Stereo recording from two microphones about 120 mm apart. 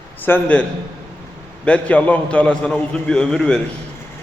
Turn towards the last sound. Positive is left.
turn(degrees=5)  # may be behind; listen again after turning